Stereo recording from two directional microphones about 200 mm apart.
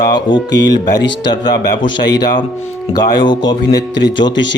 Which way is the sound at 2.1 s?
20° left (ahead or behind).